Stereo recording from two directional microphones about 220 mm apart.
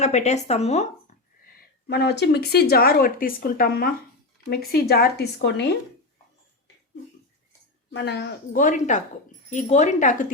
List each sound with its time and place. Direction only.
0.0 s speech: 30° left (ahead or behind)
1.9 s speech: 50° left (ahead or behind)
7.9 s speech: 50° left (ahead or behind)